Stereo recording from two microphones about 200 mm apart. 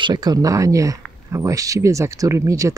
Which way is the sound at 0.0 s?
20° right (ahead or behind).